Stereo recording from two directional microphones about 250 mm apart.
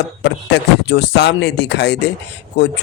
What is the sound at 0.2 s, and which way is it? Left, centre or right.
Speech, left.